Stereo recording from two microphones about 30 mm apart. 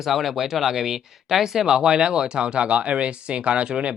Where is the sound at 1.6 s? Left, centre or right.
Right.